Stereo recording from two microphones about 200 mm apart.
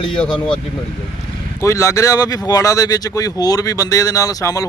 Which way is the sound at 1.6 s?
15° left (ahead or behind).